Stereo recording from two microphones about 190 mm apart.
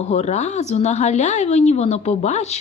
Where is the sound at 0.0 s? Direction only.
35° left (ahead or behind).